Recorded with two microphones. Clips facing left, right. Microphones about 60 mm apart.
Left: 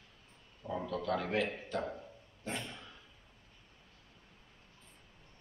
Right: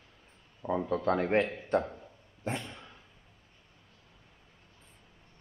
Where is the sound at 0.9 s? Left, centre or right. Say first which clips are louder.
Right 7 dB; right.